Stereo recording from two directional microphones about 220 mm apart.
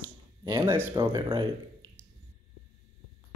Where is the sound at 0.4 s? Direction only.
15° right (ahead or behind).